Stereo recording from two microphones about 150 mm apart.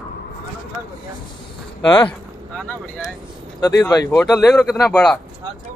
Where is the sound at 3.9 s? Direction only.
20° left (ahead or behind).